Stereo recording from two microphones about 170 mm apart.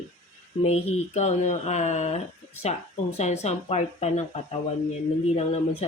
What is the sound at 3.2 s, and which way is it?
Speech, 40° left (ahead or behind).